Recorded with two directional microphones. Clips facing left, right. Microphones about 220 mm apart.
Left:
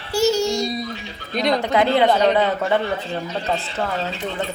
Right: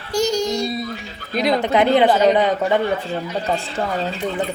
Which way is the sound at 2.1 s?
Centre (ahead or behind).